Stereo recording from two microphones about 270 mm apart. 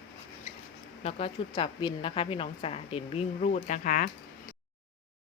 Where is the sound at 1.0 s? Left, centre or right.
Left.